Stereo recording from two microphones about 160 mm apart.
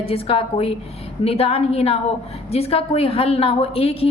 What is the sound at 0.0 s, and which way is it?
A woman's voice, 35° left (ahead or behind).